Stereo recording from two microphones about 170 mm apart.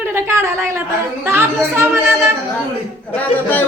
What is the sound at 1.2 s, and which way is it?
Speech, 15° right (ahead or behind).